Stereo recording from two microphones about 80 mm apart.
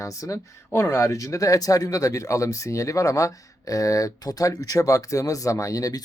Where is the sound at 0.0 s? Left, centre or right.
Left.